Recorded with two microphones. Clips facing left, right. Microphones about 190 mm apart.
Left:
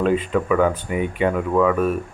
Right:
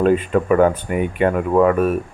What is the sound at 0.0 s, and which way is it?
Speech, 50° right (ahead or behind).